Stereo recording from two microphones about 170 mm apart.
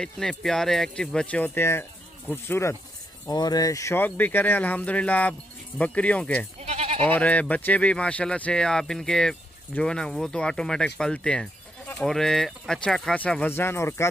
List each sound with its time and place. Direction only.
0.0 s speech: 5° left (ahead or behind)
6.6 s goat: 40° right (ahead or behind)
7.0 s speech: 10° left (ahead or behind)